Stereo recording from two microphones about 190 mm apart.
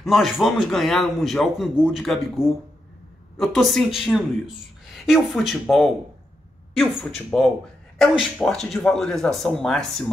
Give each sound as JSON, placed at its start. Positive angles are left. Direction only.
{"t": 0.0, "sound": "a woman's voice", "side_deg": 0}